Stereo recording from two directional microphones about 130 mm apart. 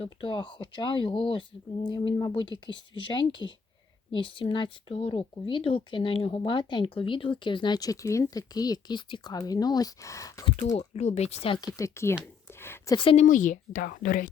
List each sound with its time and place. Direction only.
0.0 s speech: 40° left (ahead or behind); by 10.4 s 25° left (ahead or behind)
10.8 s speech: 60° left (ahead or behind)
11.5 s speech: 30° left (ahead or behind)
12.5 s a sound: 20° left (ahead or behind)
13.0 s speech: 45° left (ahead or behind)
13.2 s speech: 85° left